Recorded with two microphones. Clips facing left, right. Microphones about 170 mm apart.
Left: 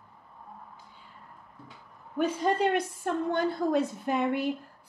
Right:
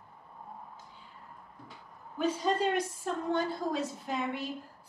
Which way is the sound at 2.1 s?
60° left (ahead or behind).